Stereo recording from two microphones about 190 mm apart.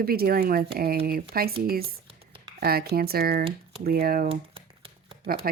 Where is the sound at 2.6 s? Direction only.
55° right (ahead or behind).